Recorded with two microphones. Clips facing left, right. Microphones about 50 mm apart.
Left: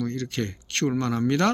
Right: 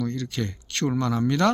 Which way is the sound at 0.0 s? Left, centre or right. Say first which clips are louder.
Even; left.